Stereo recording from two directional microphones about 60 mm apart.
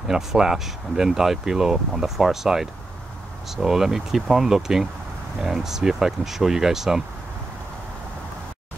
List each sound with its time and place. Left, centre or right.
0.1 s speech: centre